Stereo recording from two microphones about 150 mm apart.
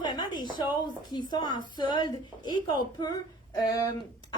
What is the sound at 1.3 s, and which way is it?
A woman's voice, 30° left (ahead or behind).